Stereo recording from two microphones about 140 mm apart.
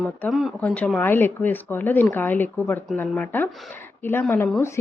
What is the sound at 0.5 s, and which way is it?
Speech, 10° left (ahead or behind).